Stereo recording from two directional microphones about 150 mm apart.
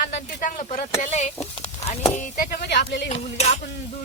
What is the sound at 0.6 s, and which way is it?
Speech, 55° left (ahead or behind).